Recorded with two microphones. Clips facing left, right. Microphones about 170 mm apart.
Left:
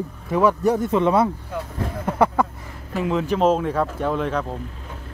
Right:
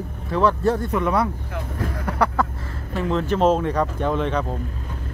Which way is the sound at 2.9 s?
10° left (ahead or behind).